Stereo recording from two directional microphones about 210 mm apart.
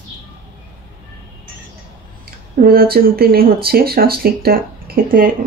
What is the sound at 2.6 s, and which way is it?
Speech, 45° right (ahead or behind).